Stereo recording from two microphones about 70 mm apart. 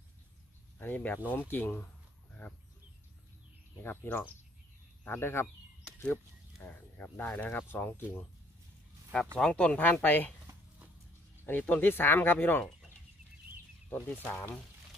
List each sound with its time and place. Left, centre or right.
0.7 s speech: left
3.8 s speech: left
6.6 s speech: left
9.4 s speech: centre
11.4 s speech: left
13.9 s speech: centre